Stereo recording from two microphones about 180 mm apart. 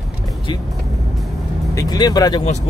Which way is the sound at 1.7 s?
20° left (ahead or behind).